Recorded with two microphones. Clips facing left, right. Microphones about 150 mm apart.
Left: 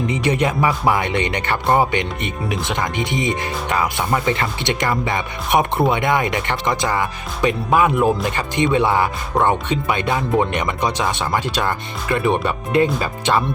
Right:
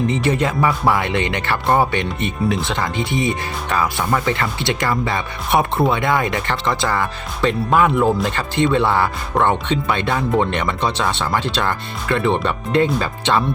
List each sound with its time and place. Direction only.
0.1 s speech: 15° left (ahead or behind)
1.6 s speech: centre (ahead or behind)
1.9 s speech: 20° left (ahead or behind)